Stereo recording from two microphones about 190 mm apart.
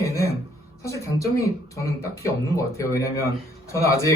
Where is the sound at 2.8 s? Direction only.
15° left (ahead or behind).